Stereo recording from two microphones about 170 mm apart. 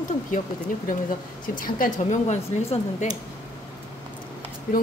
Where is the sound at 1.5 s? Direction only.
55° left (ahead or behind).